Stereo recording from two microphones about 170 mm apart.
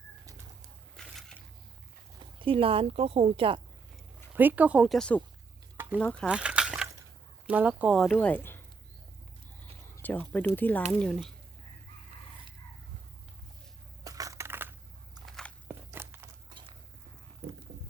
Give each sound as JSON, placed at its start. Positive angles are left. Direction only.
{"t": 1.0, "sound": "a sound", "side_deg": 5}
{"t": 2.4, "sound": "a woman's voice", "side_deg": -30}
{"t": 4.4, "sound": "speech", "side_deg": -10}
{"t": 5.7, "sound": "a sound", "side_deg": -10}
{"t": 6.0, "sound": "speech", "side_deg": 10}
{"t": 6.2, "sound": "a sound", "side_deg": -5}
{"t": 7.4, "sound": "speech", "side_deg": -10}
{"t": 9.9, "sound": "speech", "side_deg": 10}
{"t": 14.0, "sound": "crushing", "side_deg": -20}
{"t": 15.3, "sound": "biting", "side_deg": 5}
{"t": 15.6, "sound": "biting", "side_deg": -15}